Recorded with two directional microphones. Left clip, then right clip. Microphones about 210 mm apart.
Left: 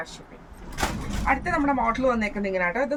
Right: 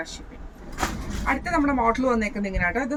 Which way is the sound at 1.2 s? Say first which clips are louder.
Even; 10° left (ahead or behind).